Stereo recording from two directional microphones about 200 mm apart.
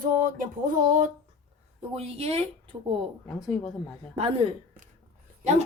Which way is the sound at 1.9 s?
30° right (ahead or behind).